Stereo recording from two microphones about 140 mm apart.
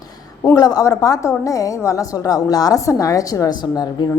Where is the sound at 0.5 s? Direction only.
25° left (ahead or behind).